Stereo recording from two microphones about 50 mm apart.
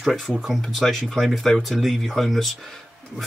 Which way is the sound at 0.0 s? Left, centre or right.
Centre.